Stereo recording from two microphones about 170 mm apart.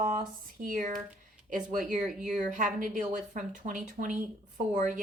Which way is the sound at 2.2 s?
50° right (ahead or behind).